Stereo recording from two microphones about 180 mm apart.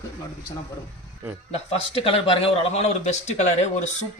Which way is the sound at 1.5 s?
30° left (ahead or behind).